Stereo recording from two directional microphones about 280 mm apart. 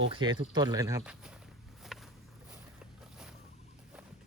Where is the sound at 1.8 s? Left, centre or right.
Centre.